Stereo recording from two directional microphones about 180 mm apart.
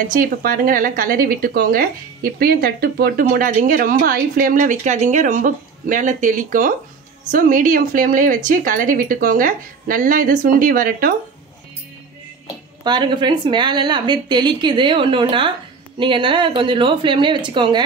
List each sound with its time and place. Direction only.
0.1 s speech: 50° right (ahead or behind)
12.8 s a woman's voice: 25° right (ahead or behind)